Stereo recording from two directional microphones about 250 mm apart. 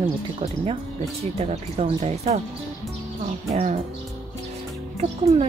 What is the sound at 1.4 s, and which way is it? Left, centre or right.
A woman's voice, right.